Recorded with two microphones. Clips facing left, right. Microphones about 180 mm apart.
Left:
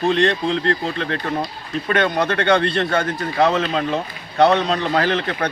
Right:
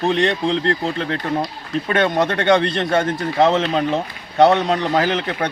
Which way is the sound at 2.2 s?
20° right (ahead or behind).